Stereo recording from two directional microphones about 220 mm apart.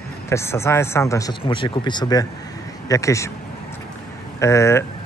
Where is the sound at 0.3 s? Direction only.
10° left (ahead or behind).